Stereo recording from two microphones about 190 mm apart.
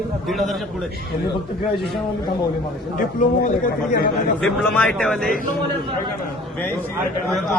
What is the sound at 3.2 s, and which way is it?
A man's voice, 45° left (ahead or behind).